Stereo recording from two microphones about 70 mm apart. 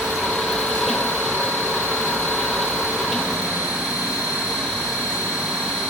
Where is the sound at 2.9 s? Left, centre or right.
Centre.